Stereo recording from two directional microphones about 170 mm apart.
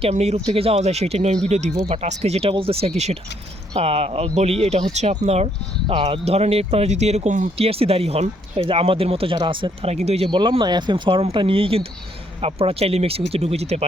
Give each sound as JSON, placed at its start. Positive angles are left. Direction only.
{"t": 0.0, "sound": "speech", "side_deg": -40}